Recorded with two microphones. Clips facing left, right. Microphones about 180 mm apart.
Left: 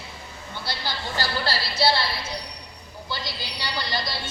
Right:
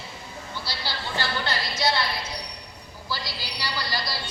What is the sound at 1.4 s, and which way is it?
Music, 30° left (ahead or behind).